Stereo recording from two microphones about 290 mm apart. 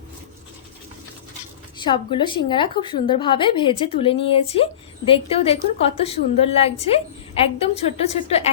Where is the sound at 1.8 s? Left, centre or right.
Centre.